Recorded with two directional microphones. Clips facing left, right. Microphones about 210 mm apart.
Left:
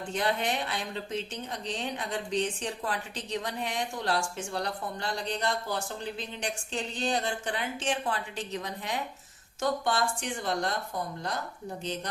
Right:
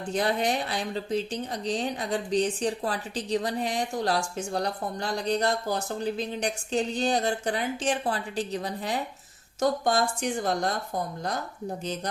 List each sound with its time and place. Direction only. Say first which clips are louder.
0.1 s speech: right 4 dB; 40° right (ahead or behind)